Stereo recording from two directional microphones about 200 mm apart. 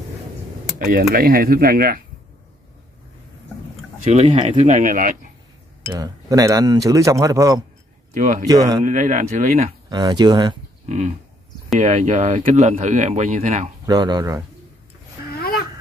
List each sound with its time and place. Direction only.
0.7 s speech: 45° right (ahead or behind)
4.0 s speech: 35° right (ahead or behind)
5.9 s speech: 20° right (ahead or behind)
8.1 s speech: 40° right (ahead or behind)
8.5 s speech: 20° right (ahead or behind)
8.8 s speech: 40° right (ahead or behind)
9.8 s speech: 20° right (ahead or behind)
10.9 s speech: 40° right (ahead or behind)
13.8 s speech: 20° right (ahead or behind)